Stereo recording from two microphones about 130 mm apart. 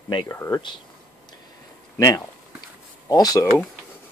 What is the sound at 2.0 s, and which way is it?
Speech, 25° left (ahead or behind).